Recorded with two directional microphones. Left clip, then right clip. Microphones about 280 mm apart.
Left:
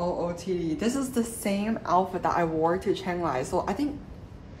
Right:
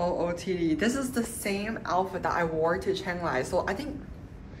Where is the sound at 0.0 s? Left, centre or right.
Centre.